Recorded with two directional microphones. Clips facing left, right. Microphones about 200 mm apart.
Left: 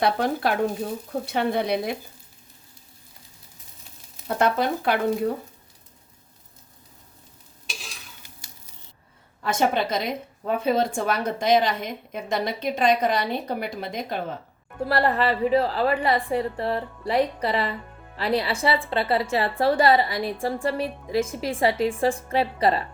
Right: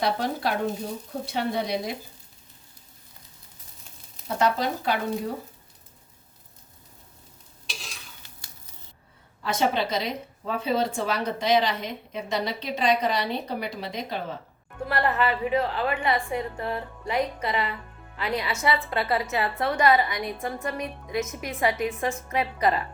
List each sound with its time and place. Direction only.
0.0 s speech: 55° left (ahead or behind)
4.4 s speech: 55° left (ahead or behind)
9.4 s a woman's voice: 50° left (ahead or behind)
14.8 s a woman's voice: 35° left (ahead or behind)